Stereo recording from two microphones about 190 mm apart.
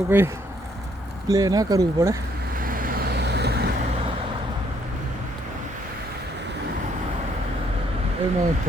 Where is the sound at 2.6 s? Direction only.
50° right (ahead or behind).